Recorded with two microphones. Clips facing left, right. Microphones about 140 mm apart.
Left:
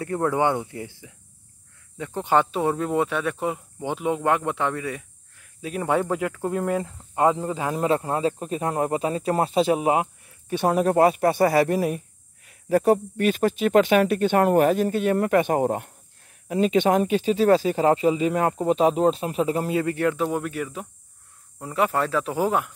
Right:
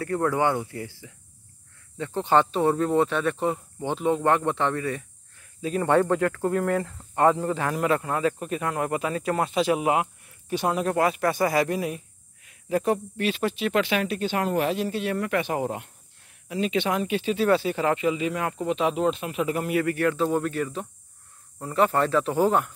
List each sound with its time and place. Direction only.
0.0 s speech: 20° left (ahead or behind)
7.7 s speech: 30° left (ahead or behind)
10.6 s speech: 45° left (ahead or behind); by 20.2 s 20° left (ahead or behind)
20.2 s speech: 10° left (ahead or behind)